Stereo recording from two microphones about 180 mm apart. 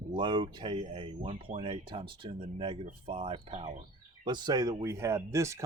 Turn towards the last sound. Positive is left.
turn(degrees=-15)  # may be behind; listen again after turning